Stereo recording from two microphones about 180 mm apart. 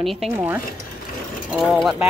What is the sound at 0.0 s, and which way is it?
Speech, centre (ahead or behind).